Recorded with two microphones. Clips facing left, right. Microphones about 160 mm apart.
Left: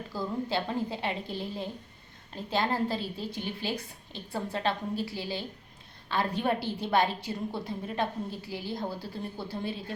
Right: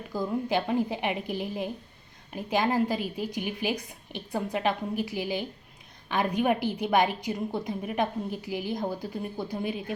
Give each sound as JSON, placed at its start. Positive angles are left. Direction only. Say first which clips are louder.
{"t": 0.1, "sound": "a woman's voice", "louder": "right 4 dB", "side_deg": -15}